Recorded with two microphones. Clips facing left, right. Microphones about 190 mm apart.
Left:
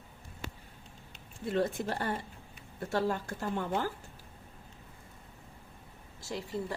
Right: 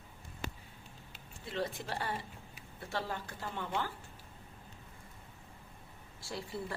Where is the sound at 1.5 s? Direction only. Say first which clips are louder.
Left 7 dB; 50° left (ahead or behind).